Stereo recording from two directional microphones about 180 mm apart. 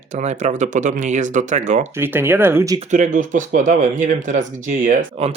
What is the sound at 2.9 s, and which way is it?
Speech, 45° right (ahead or behind).